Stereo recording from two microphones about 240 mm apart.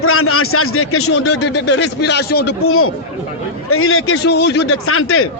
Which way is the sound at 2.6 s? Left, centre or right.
Left.